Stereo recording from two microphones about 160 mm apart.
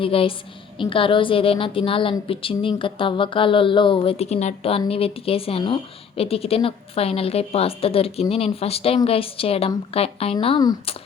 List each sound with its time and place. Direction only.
0.0 s a woman's voice: 35° left (ahead or behind)